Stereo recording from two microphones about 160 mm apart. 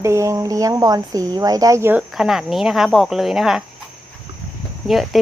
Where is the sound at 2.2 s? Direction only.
Centre (ahead or behind).